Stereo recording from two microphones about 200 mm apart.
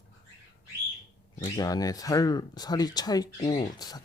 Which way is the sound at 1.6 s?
20° left (ahead or behind).